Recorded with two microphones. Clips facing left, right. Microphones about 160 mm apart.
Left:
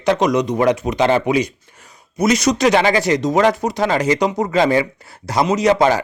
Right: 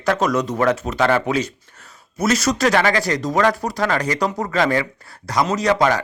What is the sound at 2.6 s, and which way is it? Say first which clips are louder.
Speech: left 3 dB; 20° left (ahead or behind).